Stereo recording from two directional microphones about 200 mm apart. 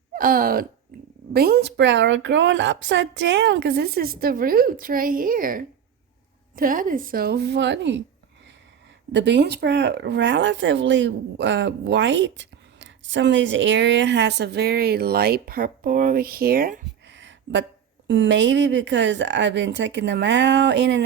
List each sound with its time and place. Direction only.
0.1 s speech: 45° right (ahead or behind)
0.9 s cat: 45° right (ahead or behind)
1.3 s a woman's voice: 50° right (ahead or behind)
9.1 s speech: 60° right (ahead or behind)
17.1 s a sound: 65° right (ahead or behind)
18.1 s speech: 65° right (ahead or behind)